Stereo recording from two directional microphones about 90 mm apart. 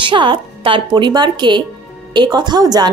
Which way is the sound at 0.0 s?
65° right (ahead or behind).